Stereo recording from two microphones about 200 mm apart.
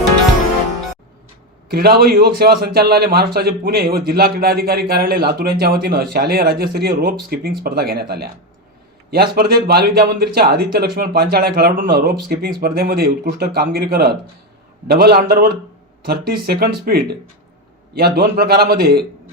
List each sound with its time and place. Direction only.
1.6 s speech: 50° right (ahead or behind)